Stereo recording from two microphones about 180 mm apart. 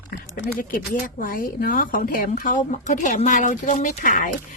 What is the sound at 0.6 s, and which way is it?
Speech, 50° left (ahead or behind).